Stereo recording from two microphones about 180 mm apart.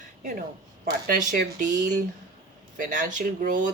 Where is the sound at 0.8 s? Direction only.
50° right (ahead or behind).